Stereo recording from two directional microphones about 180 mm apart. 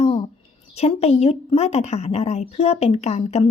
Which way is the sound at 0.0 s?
30° left (ahead or behind).